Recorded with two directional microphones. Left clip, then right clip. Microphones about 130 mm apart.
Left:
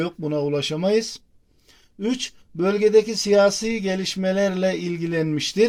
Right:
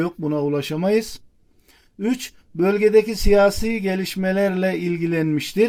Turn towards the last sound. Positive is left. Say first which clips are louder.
# right 1 dB
turn(degrees=-25)  # may be behind; listen again after turning